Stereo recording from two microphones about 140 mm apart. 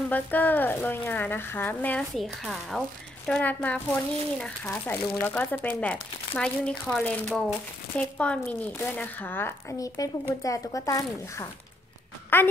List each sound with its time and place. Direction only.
0.1 s a child's voice: 10° left (ahead or behind)